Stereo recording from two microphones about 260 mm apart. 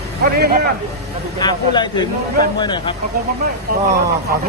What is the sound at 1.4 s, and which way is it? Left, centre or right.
Speech, centre.